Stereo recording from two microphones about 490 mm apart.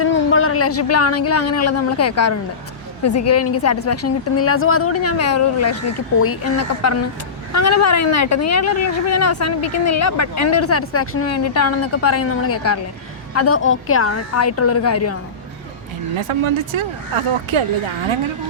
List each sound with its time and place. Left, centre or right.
0.0 s a woman's voice: left
16.1 s speech: right